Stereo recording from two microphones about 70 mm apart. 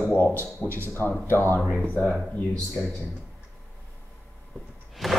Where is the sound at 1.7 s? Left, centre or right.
Centre.